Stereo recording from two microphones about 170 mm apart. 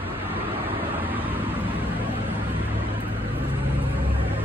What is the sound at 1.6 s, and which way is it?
Vehicle, 10° left (ahead or behind).